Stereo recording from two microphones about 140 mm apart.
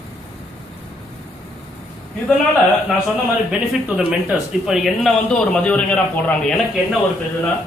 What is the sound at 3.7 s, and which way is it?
Speech, 5° right (ahead or behind).